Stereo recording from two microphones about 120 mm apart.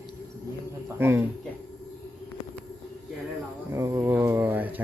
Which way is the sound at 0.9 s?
20° right (ahead or behind).